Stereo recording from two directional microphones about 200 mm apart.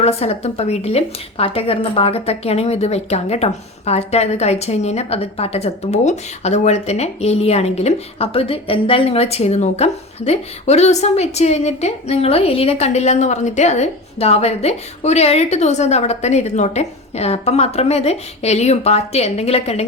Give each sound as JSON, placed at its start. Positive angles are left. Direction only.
{"t": 0.0, "sound": "speech", "side_deg": 30}